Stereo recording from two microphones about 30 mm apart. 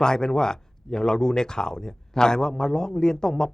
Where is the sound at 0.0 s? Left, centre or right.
Left.